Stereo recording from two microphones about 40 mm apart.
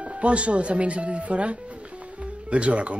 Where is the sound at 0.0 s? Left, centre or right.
Right.